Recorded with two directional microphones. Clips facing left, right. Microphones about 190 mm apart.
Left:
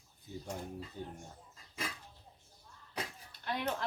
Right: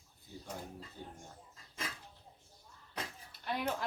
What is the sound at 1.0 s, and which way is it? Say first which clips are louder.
Speech: left 4 dB; 15° left (ahead or behind).